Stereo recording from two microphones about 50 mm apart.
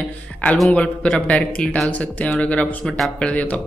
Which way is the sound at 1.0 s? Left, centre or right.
Left.